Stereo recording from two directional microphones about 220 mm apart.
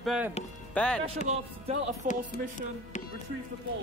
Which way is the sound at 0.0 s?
Centre (ahead or behind).